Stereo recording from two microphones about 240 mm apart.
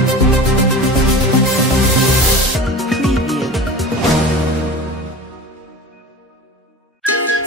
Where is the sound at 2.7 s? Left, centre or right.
Centre.